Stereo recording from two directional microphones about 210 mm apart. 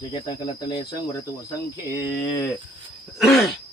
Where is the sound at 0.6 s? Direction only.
20° left (ahead or behind).